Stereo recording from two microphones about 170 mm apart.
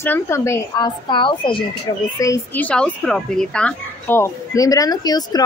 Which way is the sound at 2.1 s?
20° left (ahead or behind).